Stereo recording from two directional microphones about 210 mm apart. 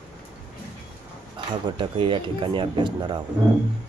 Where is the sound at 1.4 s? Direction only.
25° right (ahead or behind).